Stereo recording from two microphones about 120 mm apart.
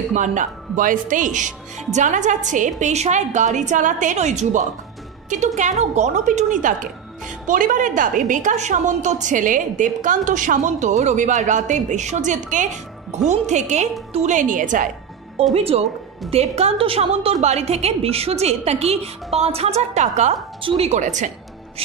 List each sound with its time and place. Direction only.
0.1 s a woman's voice: 90° right
15.5 s a woman's voice: 55° right (ahead or behind); by 20.3 s 75° right (ahead or behind)
20.6 s a woman's voice: 55° right (ahead or behind); by 21.3 s 90° right